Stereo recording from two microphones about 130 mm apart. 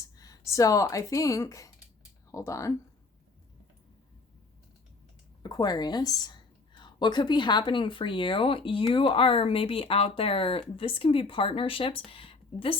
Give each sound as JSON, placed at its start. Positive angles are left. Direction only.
{"t": 0.2, "sound": "speech", "side_deg": 25}
{"t": 5.4, "sound": "a woman's voice", "side_deg": 30}